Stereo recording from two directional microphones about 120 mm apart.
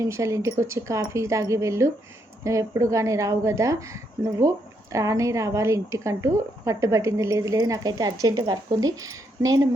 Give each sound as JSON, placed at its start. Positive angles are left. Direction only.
{"t": 0.0, "sound": "a woman's voice", "side_deg": -25}